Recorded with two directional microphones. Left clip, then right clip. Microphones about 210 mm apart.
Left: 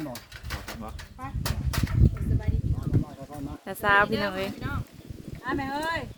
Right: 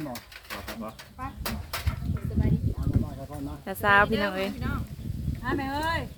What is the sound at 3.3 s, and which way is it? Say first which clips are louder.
Speech: right 1 dB; centre (ahead or behind).